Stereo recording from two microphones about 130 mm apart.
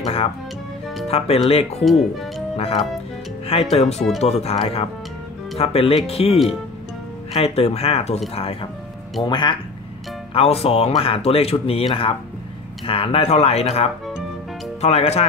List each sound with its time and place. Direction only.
1.0 s speech: 50° left (ahead or behind)
1.9 s speech: centre (ahead or behind)
2.5 s speech: 50° left (ahead or behind)
9.2 s speech: 35° left (ahead or behind)
10.3 s speech: 50° left (ahead or behind)